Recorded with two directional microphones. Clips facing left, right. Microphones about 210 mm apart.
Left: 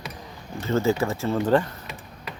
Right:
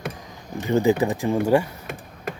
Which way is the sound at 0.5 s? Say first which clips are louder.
Right 3 dB; 15° right (ahead or behind).